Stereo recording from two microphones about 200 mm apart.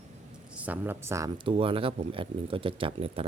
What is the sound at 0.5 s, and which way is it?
Speech, 5° right (ahead or behind).